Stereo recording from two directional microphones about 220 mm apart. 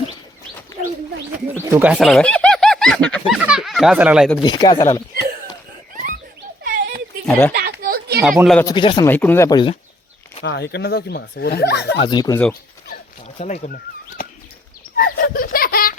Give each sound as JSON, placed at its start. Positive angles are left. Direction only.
{"t": 1.5, "sound": "speech", "side_deg": -10}
{"t": 4.4, "sound": "speech", "side_deg": 20}
{"t": 6.7, "sound": "a sound", "side_deg": -40}
{"t": 7.3, "sound": "speech", "side_deg": 10}
{"t": 7.5, "sound": "a sound", "side_deg": -45}
{"t": 8.2, "sound": "speech", "side_deg": 0}
{"t": 8.6, "sound": "speech", "side_deg": 20}
{"t": 9.0, "sound": "speech", "side_deg": 10}
{"t": 10.4, "sound": "speech", "side_deg": 50}
{"t": 11.9, "sound": "speech", "side_deg": 20}
{"t": 13.2, "sound": "speech", "side_deg": 30}
{"t": 14.9, "sound": "laughter", "side_deg": 40}